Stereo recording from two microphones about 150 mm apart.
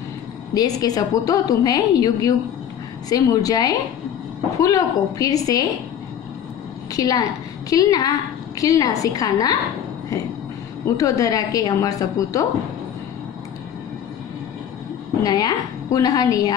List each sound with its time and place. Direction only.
0.6 s a woman's voice: 25° left (ahead or behind)
6.9 s a woman's voice: 25° left (ahead or behind)
11.0 s a woman's voice: 20° left (ahead or behind)
15.2 s a woman's voice: 25° left (ahead or behind)